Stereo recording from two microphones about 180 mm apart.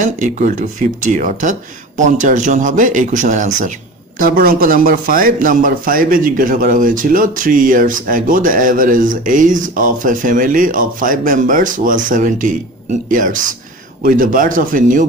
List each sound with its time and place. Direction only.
0.0 s speech: 45° right (ahead or behind)